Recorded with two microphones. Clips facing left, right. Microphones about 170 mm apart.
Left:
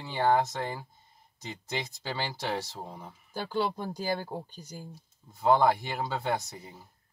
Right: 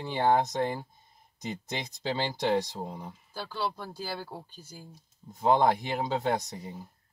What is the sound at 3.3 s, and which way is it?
Speech, 15° left (ahead or behind).